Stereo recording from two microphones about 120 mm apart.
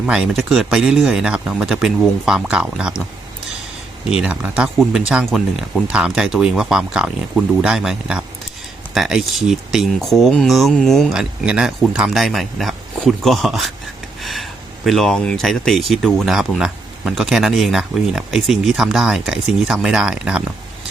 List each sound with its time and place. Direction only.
0.0 s speech: 5° right (ahead or behind)
4.2 s speech: 5° right (ahead or behind)